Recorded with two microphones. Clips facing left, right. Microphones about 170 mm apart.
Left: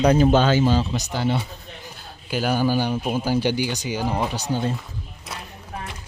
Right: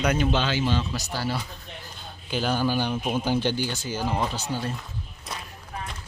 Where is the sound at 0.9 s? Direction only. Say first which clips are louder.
Left 5 dB; 20° left (ahead or behind).